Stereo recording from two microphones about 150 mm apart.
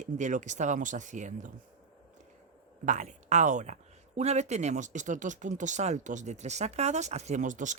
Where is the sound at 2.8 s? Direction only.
55° right (ahead or behind).